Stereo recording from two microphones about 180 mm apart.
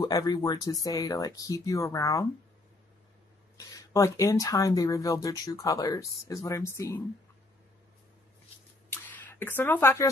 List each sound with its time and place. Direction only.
0.0 s speech: 25° left (ahead or behind)
3.5 s speech: 20° left (ahead or behind)
8.9 s a sound: 10° left (ahead or behind)